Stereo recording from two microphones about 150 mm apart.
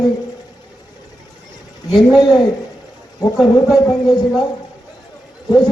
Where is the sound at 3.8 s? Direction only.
25° left (ahead or behind).